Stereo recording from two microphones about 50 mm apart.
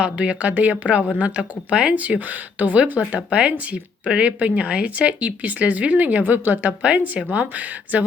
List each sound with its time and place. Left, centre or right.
0.0 s speech: right
2.0 s speech: right
3.2 s speech: centre; by 6.7 s right
6.8 s speech: right